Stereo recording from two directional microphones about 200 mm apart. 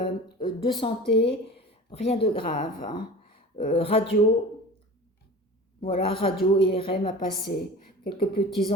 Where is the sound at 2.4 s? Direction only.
40° left (ahead or behind).